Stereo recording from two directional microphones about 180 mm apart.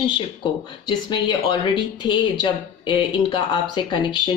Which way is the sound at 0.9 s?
25° left (ahead or behind).